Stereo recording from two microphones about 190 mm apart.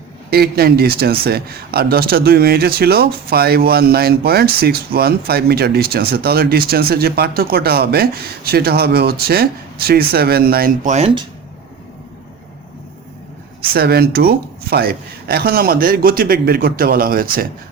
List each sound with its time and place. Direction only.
0.3 s speech: 55° right (ahead or behind)
10.9 s speech: 30° right (ahead or behind)
13.7 s speech: 55° right (ahead or behind)